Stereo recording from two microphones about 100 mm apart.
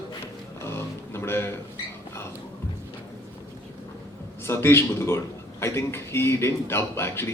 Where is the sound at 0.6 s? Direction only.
25° left (ahead or behind).